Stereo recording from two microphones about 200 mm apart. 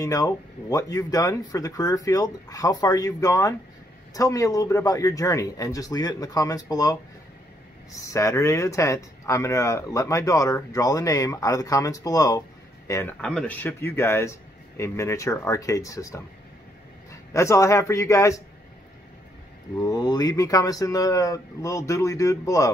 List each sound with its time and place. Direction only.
0.0 s speech: 15° left (ahead or behind)
8.0 s speech: 15° left (ahead or behind)
13.2 s speech: 5° left (ahead or behind)
19.8 s speech: 20° left (ahead or behind)